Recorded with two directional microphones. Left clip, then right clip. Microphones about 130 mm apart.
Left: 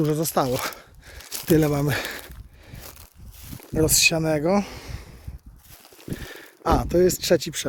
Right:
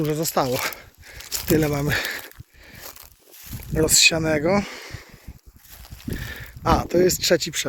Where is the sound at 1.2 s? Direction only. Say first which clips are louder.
Even; 15° right (ahead or behind).